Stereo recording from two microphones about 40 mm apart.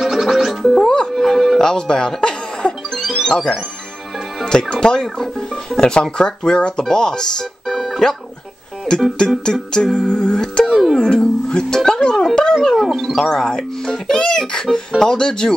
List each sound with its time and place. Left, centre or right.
0.0 s music: centre
1.6 s music: centre
4.5 s speech: centre
7.6 s music: centre
9.4 s speech: centre
10.6 s music: centre
11.0 s speech: left
12.5 s music: centre
13.1 s speech: centre